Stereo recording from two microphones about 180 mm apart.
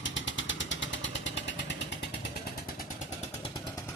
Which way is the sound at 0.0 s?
90° left.